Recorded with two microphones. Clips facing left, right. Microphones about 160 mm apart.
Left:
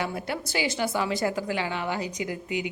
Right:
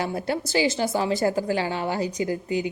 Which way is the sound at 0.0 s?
35° right (ahead or behind).